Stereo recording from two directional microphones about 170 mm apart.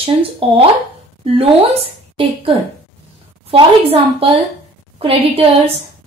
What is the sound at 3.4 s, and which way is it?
Speech, 35° right (ahead or behind).